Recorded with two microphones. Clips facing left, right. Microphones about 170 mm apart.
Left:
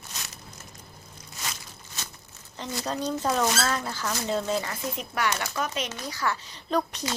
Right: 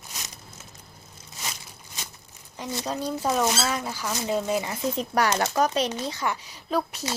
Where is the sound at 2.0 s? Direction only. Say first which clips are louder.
Even; 15° right (ahead or behind).